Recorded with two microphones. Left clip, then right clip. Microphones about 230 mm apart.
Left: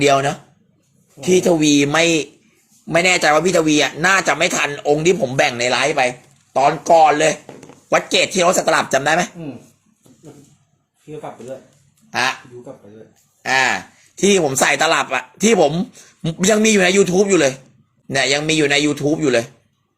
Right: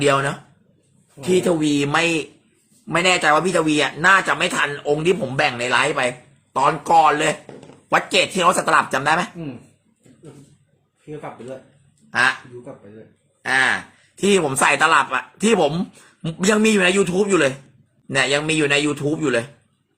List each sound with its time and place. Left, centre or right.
0.0 s a man's voice: centre
12.1 s a man's voice: centre
13.4 s a man's voice: centre